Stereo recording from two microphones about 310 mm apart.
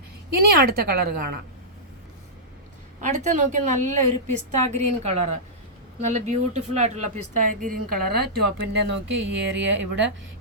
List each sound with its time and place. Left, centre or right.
0.3 s a woman's voice: right
3.0 s speech: right